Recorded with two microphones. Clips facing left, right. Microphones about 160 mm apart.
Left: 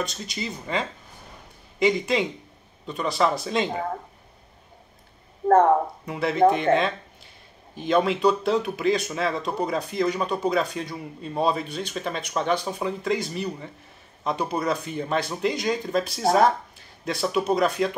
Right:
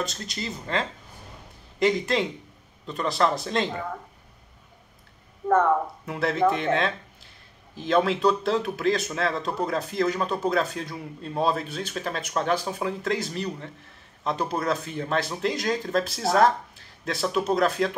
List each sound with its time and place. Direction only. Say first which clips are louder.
0.0 s speech: left 1 dB; centre (ahead or behind)
5.5 s speech: left 4 dB; 30° left (ahead or behind)
6.0 s speech: left 3 dB; centre (ahead or behind)